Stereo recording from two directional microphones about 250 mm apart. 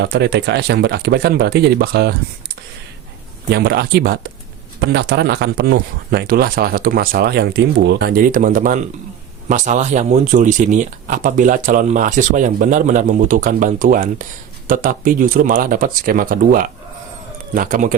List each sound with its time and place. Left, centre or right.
0.0 s speech: right
3.5 s speech: right